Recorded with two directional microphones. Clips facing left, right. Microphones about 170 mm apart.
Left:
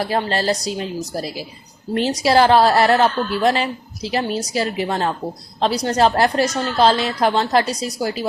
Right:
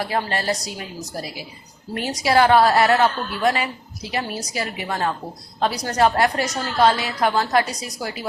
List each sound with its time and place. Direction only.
0.1 s a woman's voice: 30° left (ahead or behind)